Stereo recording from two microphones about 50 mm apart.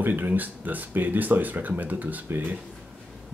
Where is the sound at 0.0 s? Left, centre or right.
Right.